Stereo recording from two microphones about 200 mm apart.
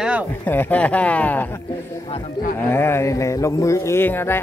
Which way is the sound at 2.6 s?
10° left (ahead or behind).